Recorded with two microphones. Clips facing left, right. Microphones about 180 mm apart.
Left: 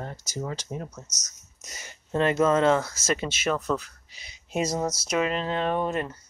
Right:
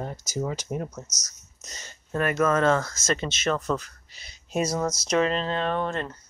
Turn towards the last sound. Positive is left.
turn(degrees=10)  # may be behind; listen again after turning